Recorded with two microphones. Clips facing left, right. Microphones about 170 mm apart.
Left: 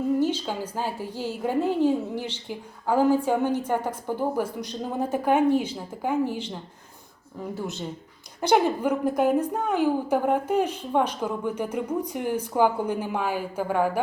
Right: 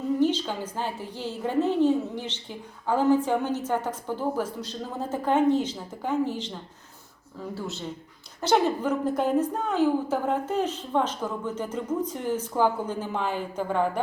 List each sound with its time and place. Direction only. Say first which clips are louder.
0.2 s a woman's voice: right 1 dB; 10° left (ahead or behind)